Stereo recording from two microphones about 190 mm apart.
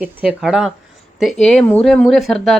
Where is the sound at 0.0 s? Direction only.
5° right (ahead or behind).